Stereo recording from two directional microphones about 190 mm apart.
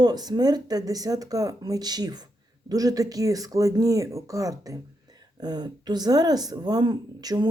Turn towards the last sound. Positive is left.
turn(degrees=-20)  # may be behind; listen again after turning